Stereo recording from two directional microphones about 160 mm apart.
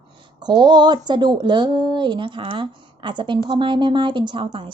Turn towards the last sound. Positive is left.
turn(degrees=-30)  # may be behind; listen again after turning